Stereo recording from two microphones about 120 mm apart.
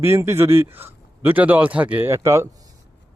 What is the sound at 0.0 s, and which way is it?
A man's voice, 20° right (ahead or behind).